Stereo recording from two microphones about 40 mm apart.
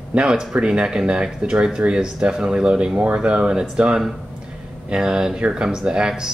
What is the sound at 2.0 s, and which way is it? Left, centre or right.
Speech, right.